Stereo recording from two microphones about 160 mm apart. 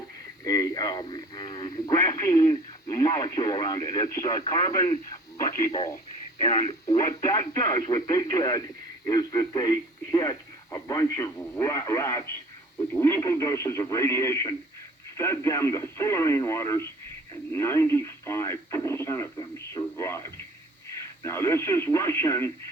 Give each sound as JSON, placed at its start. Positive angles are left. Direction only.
{"t": 0.4, "sound": "speech", "side_deg": 25}